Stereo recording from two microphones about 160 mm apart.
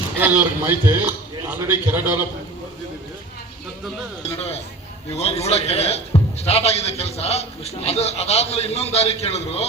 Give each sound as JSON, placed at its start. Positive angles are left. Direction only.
{"t": 0.2, "sound": "a man's voice", "side_deg": -10}
{"t": 4.4, "sound": "a man's voice", "side_deg": 40}